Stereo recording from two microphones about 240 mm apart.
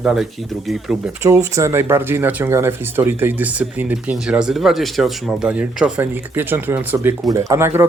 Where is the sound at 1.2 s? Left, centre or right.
Centre.